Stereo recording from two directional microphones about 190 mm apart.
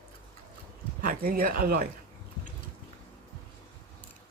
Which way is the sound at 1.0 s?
50° right (ahead or behind).